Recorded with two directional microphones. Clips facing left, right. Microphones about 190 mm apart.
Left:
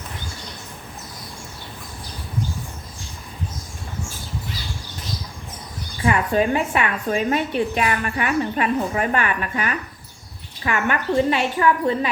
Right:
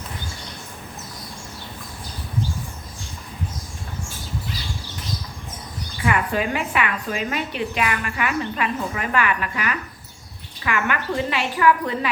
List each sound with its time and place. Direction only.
6.1 s a woman's voice: 35° left (ahead or behind)